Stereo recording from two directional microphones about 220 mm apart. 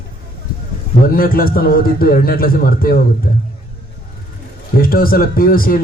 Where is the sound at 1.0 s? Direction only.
40° left (ahead or behind).